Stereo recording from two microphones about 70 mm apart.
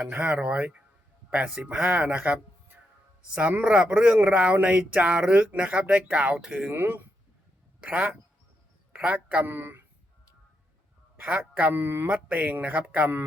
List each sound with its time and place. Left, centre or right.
0.1 s speech: centre
6.7 s speech: right
7.9 s speech: centre
11.2 s speech: centre